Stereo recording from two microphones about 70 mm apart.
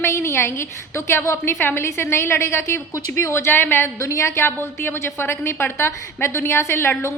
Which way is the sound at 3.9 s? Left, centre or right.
Left.